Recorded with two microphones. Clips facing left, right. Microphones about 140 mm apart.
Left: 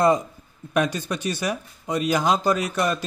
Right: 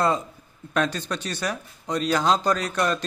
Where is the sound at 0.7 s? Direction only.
10° left (ahead or behind).